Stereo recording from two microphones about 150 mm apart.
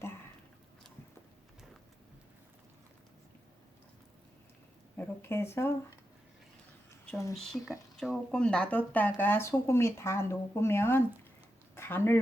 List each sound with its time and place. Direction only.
4.9 s speech: 15° left (ahead or behind)
7.3 s speech: centre (ahead or behind); by 11.0 s 15° left (ahead or behind)
11.7 s a sound: 15° left (ahead or behind)